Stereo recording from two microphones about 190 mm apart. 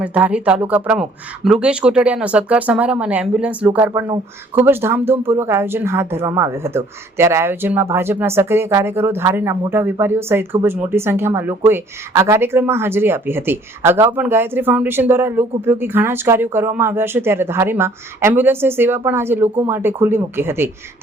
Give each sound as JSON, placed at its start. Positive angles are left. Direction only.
{"t": 0.0, "sound": "speech", "side_deg": -10}